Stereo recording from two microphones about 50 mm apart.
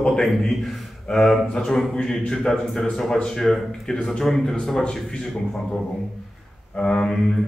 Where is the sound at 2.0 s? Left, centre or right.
Centre.